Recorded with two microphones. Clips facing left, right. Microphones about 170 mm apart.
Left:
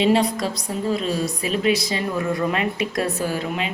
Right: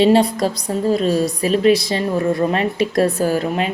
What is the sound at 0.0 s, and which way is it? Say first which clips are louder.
A woman's voice: right 5 dB; 35° right (ahead or behind).